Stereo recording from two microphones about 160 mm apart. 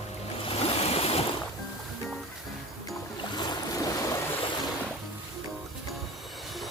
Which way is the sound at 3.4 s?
25° left (ahead or behind).